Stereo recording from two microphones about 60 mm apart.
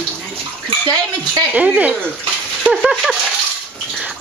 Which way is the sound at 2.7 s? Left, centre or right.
Centre.